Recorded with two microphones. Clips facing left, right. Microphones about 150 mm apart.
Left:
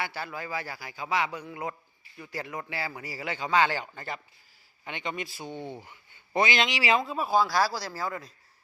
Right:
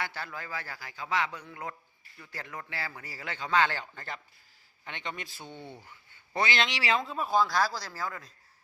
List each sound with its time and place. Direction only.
0.0 s a man's voice: 10° left (ahead or behind)